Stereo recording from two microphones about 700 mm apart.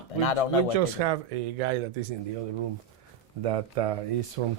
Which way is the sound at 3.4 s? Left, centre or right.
Right.